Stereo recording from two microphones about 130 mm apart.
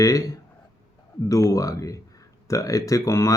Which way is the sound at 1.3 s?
25° left (ahead or behind).